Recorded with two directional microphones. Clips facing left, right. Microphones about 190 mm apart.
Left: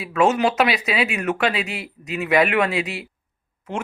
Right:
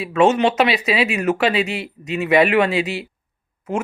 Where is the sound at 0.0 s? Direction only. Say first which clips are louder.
Right 3 dB; centre (ahead or behind).